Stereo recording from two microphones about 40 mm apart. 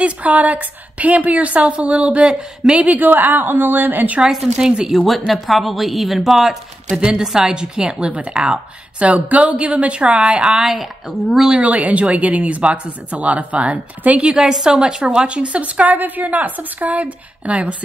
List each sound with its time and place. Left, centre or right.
0.0 s a woman's voice: right
2.8 s speech: right
3.1 s a woman's voice: right
4.2 s a woman's voice: centre
4.9 s a woman's voice: centre
7.0 s a woman's voice: centre
9.0 s speech: right
10.6 s a woman's voice: centre
11.6 s speech: right
14.4 s a woman's voice: centre
15.2 s speech: right